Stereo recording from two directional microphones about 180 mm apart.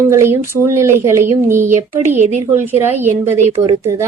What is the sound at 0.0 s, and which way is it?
Speech, 15° right (ahead or behind).